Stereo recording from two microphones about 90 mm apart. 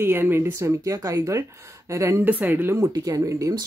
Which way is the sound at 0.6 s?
35° right (ahead or behind).